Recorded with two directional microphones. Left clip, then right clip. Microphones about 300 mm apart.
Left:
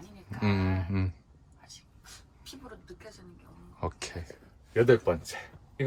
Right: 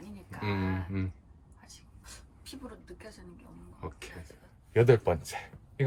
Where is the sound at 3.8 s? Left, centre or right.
Centre.